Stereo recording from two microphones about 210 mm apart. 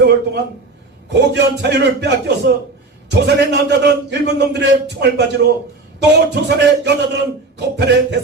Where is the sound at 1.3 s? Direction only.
55° right (ahead or behind).